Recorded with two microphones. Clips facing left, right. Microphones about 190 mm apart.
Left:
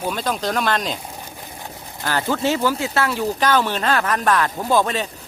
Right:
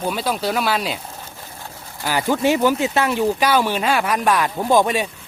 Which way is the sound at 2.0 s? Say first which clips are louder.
Right 3 dB; 15° right (ahead or behind).